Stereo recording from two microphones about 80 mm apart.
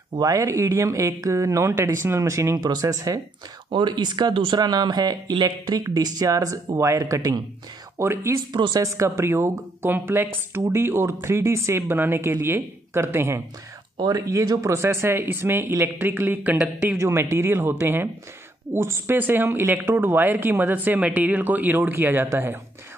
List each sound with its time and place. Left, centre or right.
0.1 s speech: right
3.7 s speech: right
4.6 s speech: right
8.0 s speech: right
13.9 s speech: right
14.8 s speech: right